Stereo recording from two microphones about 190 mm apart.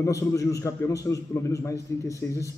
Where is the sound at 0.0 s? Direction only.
15° left (ahead or behind).